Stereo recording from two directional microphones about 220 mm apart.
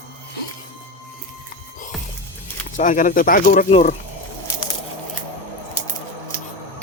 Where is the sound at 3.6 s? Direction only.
25° left (ahead or behind).